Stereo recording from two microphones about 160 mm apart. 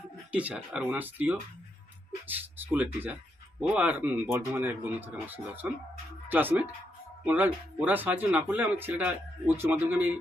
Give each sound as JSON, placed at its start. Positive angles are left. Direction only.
{"t": 0.3, "sound": "speech", "side_deg": -10}